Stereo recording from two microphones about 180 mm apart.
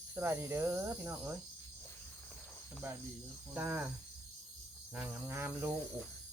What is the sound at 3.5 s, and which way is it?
Speech, 10° right (ahead or behind).